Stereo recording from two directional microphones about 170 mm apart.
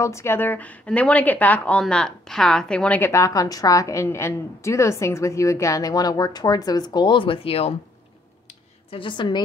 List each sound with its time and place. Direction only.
0.0 s a woman's voice: 15° left (ahead or behind); by 7.7 s 35° left (ahead or behind)
8.9 s a woman's voice: 30° left (ahead or behind)